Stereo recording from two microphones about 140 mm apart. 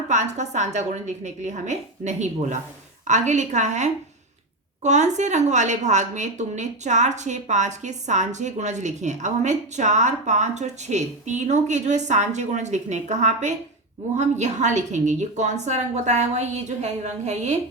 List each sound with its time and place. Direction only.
0.1 s a woman's voice: 55° right (ahead or behind)